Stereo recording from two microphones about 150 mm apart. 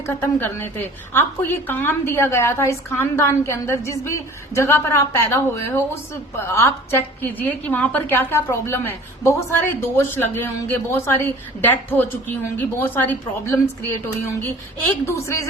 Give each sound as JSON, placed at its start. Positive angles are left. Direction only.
{"t": 0.1, "sound": "a woman's voice", "side_deg": 15}